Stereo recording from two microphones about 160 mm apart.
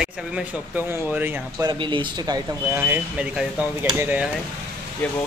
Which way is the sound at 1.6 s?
25° right (ahead or behind).